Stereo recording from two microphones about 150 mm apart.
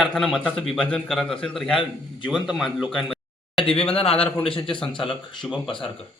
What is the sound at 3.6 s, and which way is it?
Speech, 35° left (ahead or behind).